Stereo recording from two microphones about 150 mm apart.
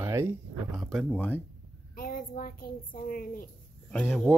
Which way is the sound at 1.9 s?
70° left (ahead or behind).